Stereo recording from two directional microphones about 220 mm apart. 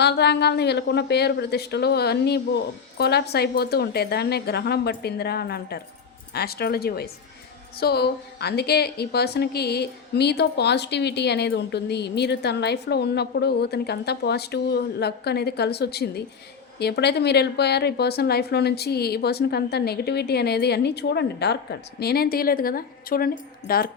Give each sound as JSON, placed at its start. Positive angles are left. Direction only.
{"t": 0.0, "sound": "a woman's voice", "side_deg": 50}